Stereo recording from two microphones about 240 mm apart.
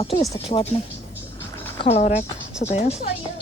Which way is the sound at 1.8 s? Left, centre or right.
Left.